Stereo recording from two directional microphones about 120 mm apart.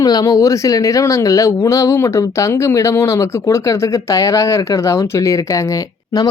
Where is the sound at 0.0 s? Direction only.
30° left (ahead or behind).